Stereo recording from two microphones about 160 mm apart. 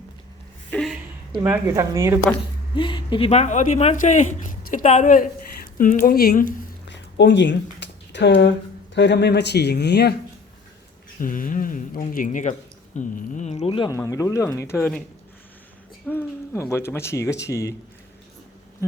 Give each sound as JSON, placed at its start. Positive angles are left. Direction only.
{"t": 0.7, "sound": "a sound", "side_deg": 0}
{"t": 1.6, "sound": "speech", "side_deg": -20}
{"t": 2.7, "sound": "a woman's voice", "side_deg": 30}
{"t": 11.2, "sound": "speech", "side_deg": 60}
{"t": 13.9, "sound": "speech", "side_deg": 20}
{"t": 16.0, "sound": "speech", "side_deg": 15}